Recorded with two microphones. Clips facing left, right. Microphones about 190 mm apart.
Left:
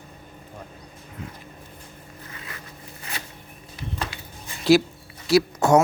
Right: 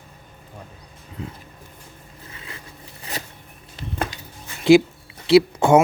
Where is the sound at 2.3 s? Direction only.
25° right (ahead or behind).